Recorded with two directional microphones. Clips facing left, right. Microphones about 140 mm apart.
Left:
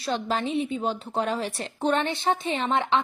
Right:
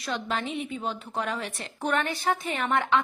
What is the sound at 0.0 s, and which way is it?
A woman's voice, 30° left (ahead or behind).